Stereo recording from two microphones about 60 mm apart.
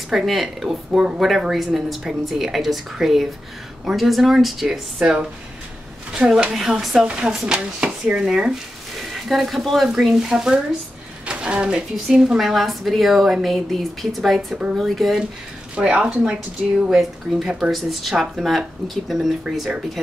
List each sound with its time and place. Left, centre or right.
0.1 s a woman's voice: centre
5.0 s a woman's voice: centre
9.1 s a woman's voice: centre
12.4 s a woman's voice: centre
15.7 s a woman's voice: centre